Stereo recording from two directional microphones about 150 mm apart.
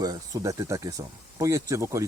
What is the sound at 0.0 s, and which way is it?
Speech, 25° right (ahead or behind).